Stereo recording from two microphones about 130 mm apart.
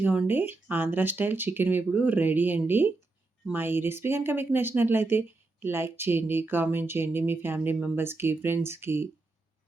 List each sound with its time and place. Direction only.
0.0 s speech: 10° right (ahead or behind)